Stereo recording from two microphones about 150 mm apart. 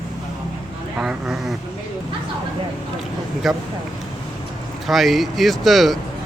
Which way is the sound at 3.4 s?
Centre (ahead or behind).